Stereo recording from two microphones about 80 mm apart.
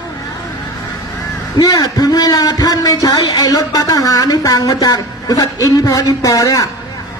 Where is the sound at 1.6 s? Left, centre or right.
Left.